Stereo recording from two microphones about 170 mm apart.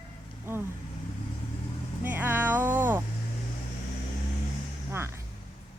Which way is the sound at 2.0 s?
10° right (ahead or behind).